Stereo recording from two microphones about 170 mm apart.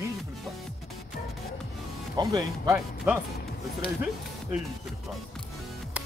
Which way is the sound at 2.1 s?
25° right (ahead or behind).